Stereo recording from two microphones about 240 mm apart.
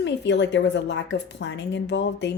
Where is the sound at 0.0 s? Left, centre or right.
Left.